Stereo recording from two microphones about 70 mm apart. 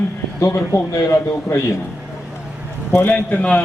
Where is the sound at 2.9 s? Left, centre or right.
Left.